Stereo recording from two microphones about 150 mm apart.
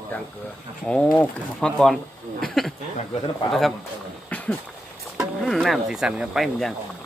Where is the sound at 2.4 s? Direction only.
Centre (ahead or behind).